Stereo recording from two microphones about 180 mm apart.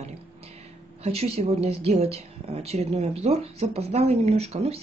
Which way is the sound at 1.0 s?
35° right (ahead or behind).